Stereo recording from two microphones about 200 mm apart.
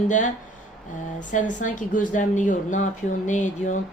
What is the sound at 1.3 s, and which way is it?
A woman's voice, 40° left (ahead or behind).